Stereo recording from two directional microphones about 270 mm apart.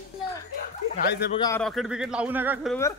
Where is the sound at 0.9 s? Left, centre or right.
Left.